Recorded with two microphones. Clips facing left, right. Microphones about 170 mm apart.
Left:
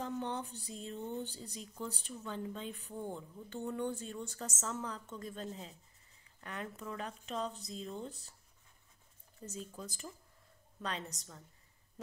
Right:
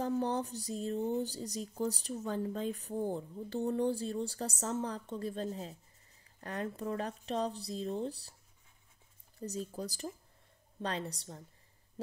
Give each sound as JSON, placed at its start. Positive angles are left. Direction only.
{"t": 0.0, "sound": "speech", "side_deg": -40}
{"t": 9.5, "sound": "speech", "side_deg": -35}